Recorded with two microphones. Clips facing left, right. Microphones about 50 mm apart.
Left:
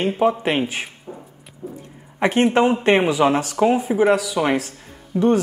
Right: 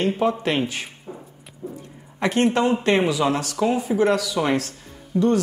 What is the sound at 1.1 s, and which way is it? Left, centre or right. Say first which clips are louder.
Beatboxing: left 1 dB; centre.